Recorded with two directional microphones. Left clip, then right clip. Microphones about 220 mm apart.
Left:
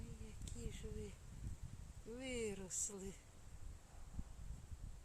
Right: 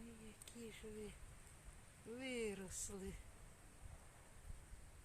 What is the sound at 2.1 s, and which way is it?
Speech, 5° left (ahead or behind).